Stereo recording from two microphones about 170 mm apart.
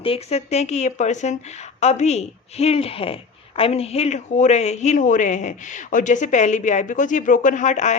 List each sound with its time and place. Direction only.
0.0 s a woman's voice: 35° left (ahead or behind)